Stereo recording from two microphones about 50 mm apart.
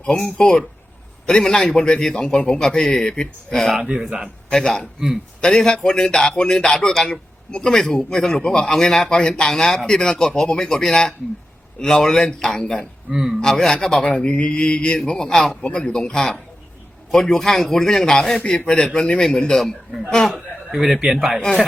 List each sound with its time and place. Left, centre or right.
0.1 s a man's voice: centre
3.5 s a man's voice: centre
3.8 s speech: centre
4.5 s a man's voice: centre
13.1 s a man's voice: centre
13.4 s a man's voice: centre
15.6 s a man's voice: left
19.5 s a man's voice: centre
20.7 s speech: centre